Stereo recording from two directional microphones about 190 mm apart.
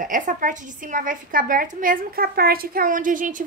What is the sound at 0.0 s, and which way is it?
A woman's voice, 45° right (ahead or behind).